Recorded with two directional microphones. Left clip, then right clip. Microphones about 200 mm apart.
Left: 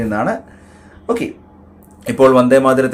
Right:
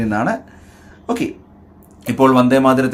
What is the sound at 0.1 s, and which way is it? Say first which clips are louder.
Speech: left 1 dB; 10° right (ahead or behind).